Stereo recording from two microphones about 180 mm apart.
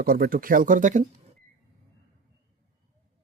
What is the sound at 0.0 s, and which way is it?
Speech, 55° right (ahead or behind).